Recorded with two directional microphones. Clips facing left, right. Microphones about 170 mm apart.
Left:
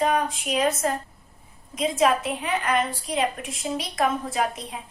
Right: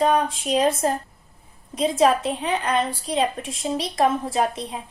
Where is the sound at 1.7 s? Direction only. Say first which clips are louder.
Right 3 dB; 30° right (ahead or behind).